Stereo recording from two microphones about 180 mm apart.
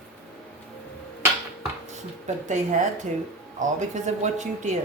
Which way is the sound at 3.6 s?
45° right (ahead or behind).